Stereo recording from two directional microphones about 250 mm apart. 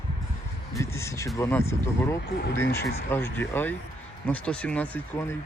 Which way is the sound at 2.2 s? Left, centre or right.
Left.